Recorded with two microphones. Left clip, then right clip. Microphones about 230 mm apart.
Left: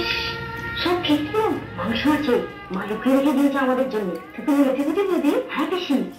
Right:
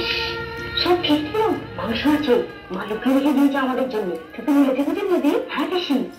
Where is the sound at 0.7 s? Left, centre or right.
Centre.